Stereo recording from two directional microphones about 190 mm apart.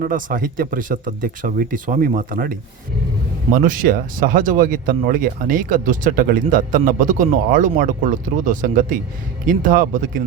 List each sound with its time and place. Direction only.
0.0 s speech: 45° right (ahead or behind)